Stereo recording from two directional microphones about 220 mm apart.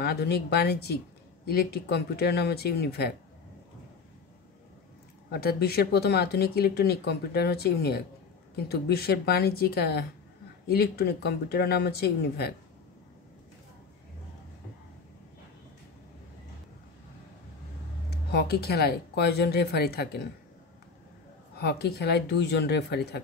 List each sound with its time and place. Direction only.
0.0 s speech: 45° left (ahead or behind)
5.3 s speech: 45° left (ahead or behind)
18.3 s speech: 45° left (ahead or behind)
21.5 s speech: 45° left (ahead or behind)